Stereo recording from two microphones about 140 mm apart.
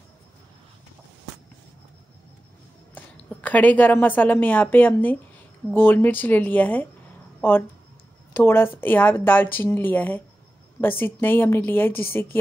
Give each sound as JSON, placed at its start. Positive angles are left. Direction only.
{"t": 2.9, "sound": "a woman's voice", "side_deg": 10}